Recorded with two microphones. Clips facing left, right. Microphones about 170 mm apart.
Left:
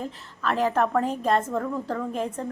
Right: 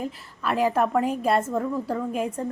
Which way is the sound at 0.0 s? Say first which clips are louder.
Right 1 dB; 10° right (ahead or behind).